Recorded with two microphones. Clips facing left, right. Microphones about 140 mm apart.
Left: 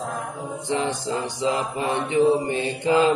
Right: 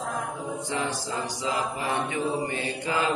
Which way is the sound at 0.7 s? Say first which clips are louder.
Left 8 dB; 25° left (ahead or behind).